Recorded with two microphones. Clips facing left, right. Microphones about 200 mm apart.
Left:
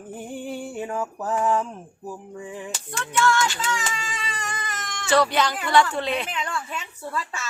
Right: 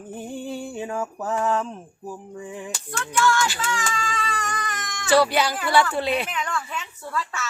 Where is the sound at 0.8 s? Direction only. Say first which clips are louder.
Even; centre (ahead or behind).